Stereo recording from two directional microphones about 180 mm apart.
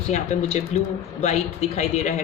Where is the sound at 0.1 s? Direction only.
40° left (ahead or behind).